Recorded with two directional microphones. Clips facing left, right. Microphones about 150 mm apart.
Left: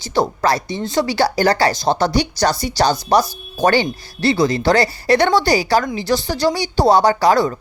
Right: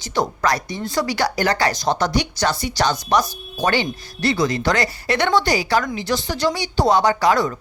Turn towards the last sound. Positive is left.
turn(degrees=35)  # may be behind; listen again after turning